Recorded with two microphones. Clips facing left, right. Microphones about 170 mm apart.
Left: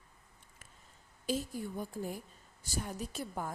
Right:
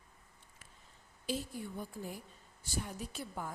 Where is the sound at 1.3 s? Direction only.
45° left (ahead or behind).